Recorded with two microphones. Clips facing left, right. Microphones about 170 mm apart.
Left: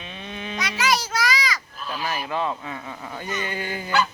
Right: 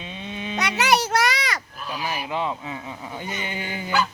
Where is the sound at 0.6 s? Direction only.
65° right (ahead or behind).